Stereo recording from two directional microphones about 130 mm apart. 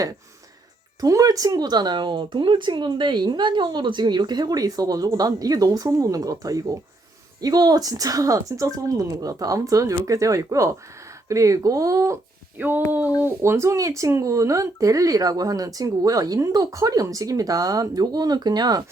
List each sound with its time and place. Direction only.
1.0 s speech: 25° right (ahead or behind)